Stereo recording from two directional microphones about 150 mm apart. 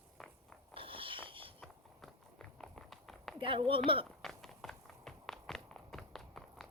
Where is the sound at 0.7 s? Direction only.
35° right (ahead or behind).